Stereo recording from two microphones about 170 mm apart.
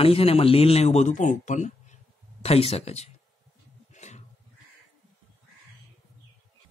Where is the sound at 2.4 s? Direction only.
35° left (ahead or behind).